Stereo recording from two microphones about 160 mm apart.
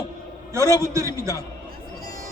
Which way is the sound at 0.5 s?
20° right (ahead or behind).